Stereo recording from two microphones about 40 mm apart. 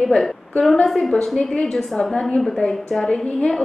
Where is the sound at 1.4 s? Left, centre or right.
Centre.